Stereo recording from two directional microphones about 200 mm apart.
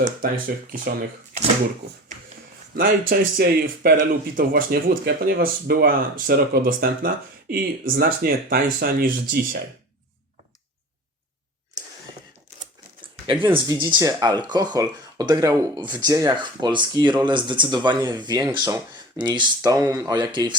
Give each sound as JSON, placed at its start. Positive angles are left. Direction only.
{"t": 0.7, "sound": "speech", "side_deg": -40}
{"t": 2.7, "sound": "speech", "side_deg": -45}
{"t": 13.4, "sound": "speech", "side_deg": -25}